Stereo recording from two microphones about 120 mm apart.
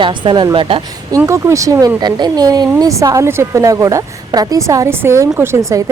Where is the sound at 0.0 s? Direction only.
40° right (ahead or behind).